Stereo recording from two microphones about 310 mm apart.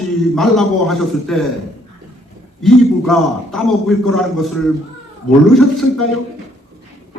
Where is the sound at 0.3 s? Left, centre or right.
Centre.